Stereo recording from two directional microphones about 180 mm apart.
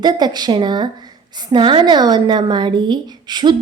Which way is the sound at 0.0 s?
25° right (ahead or behind).